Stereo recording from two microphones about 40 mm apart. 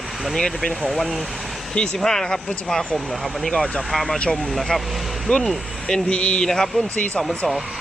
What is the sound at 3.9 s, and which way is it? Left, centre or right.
Speech, centre.